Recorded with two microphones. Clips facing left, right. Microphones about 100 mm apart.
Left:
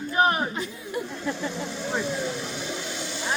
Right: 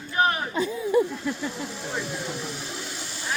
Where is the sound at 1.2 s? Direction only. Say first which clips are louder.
Even; centre (ahead or behind).